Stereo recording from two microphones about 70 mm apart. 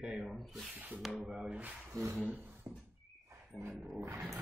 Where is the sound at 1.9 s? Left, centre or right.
Right.